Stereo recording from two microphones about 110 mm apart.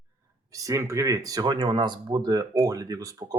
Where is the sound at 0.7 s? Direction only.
30° right (ahead or behind).